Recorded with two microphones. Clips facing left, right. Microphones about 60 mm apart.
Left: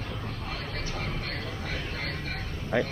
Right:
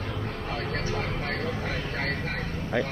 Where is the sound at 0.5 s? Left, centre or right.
Right.